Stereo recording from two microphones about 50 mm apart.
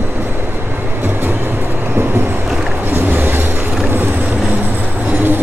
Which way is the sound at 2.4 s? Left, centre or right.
Centre.